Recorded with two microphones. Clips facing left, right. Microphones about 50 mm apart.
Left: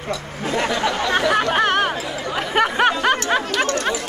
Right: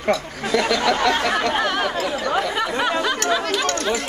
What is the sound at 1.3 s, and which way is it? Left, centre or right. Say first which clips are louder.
Chatter: left 3 dB; left.